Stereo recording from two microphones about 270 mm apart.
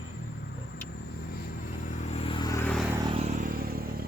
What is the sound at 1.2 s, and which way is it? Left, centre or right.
Vehicle, left.